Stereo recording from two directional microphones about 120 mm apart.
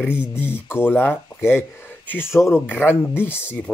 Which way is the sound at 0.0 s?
10° right (ahead or behind).